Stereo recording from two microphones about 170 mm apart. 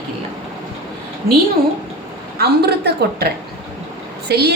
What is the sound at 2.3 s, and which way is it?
Speech, 70° right (ahead or behind).